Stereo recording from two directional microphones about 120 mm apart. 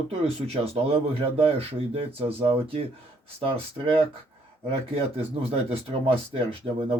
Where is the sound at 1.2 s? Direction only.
55° right (ahead or behind).